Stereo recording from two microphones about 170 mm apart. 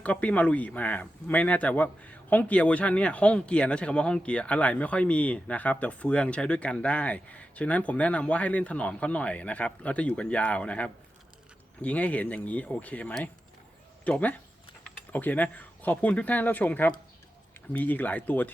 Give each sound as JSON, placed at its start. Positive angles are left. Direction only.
{"t": 0.0, "sound": "speech", "side_deg": 10}